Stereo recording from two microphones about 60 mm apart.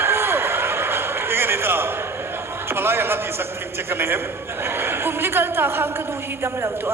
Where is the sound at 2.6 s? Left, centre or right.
Right.